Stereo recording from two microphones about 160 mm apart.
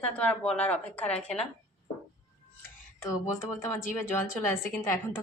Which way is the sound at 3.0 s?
20° left (ahead or behind).